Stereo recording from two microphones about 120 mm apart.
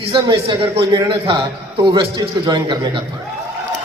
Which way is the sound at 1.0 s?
45° right (ahead or behind).